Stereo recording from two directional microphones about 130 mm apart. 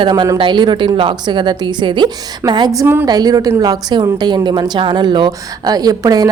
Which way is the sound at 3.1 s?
30° right (ahead or behind).